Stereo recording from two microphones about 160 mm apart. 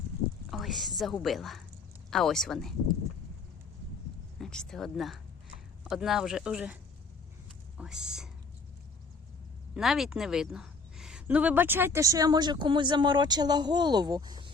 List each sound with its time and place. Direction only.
0.5 s a sound: centre (ahead or behind)
1.2 s speech: centre (ahead or behind)
4.4 s speech: 5° left (ahead or behind)
7.8 s speech: 5° right (ahead or behind)
9.7 s a woman's voice: centre (ahead or behind); by 14.5 s 25° right (ahead or behind)